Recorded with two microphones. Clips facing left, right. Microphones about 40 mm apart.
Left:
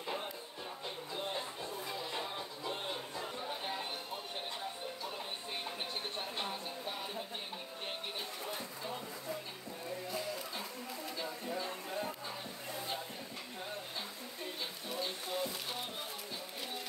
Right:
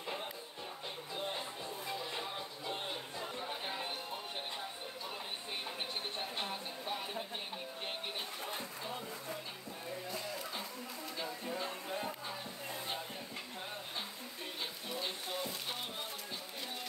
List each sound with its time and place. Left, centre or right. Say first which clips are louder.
0.0 s music: left 1 dB; centre
6.1 s music: even; centre
11.5 s music: left 1 dB; centre
14.9 s music: left 2 dB; right
15.3 s music: left 2 dB; centre